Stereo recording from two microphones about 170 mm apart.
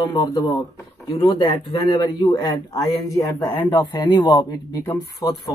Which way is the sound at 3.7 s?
25° left (ahead or behind).